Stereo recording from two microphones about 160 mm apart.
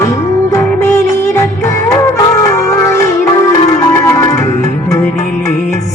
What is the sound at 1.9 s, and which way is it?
Music, 20° left (ahead or behind).